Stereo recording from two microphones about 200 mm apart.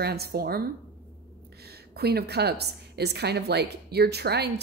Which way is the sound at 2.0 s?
55° right (ahead or behind).